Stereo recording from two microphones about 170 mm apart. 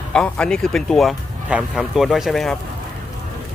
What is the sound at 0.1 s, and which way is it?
Speech, 5° left (ahead or behind).